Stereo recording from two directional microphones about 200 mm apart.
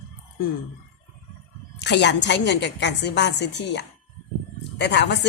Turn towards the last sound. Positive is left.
turn(degrees=60)  # may be behind; listen again after turning